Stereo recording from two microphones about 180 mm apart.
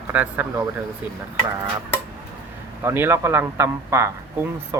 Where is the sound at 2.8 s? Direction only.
15° right (ahead or behind).